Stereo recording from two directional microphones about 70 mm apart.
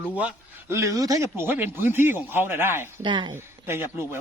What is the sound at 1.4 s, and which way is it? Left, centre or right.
A man's voice, right.